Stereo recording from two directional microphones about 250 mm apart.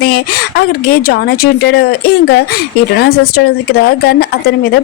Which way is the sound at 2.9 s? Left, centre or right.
Left.